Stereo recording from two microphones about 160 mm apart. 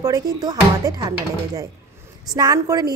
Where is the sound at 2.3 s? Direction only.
20° right (ahead or behind).